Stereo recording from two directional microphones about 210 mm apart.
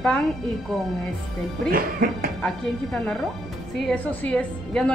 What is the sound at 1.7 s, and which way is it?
Speech, 45° right (ahead or behind).